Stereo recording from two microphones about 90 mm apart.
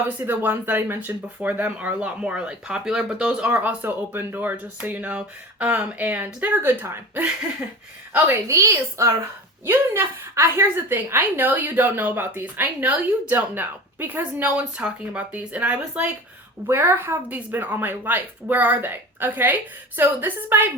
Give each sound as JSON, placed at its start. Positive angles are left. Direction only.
{"t": 0.2, "sound": "speech", "side_deg": -20}
{"t": 8.4, "sound": "a woman's voice", "side_deg": -35}
{"t": 16.6, "sound": "speech", "side_deg": -25}